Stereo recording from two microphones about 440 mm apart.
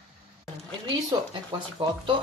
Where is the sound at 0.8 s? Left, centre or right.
Centre.